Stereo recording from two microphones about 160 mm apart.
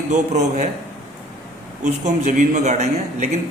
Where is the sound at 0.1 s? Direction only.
45° right (ahead or behind).